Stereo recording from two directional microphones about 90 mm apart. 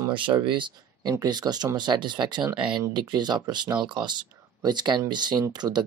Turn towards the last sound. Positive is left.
turn(degrees=-40)  # may be behind; listen again after turning